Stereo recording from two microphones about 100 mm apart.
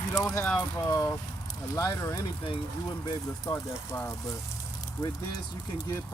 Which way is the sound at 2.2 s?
55° left (ahead or behind).